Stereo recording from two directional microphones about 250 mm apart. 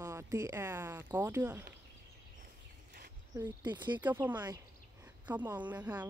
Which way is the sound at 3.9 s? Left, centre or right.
Centre.